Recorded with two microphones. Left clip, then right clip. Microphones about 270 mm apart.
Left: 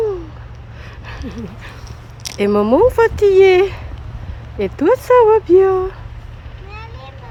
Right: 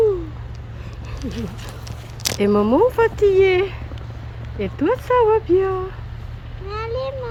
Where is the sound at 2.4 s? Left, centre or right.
Centre.